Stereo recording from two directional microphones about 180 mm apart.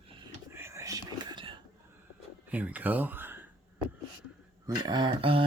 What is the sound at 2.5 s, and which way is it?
Speech, 10° right (ahead or behind).